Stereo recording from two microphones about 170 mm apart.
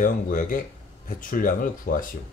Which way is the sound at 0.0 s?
50° left (ahead or behind).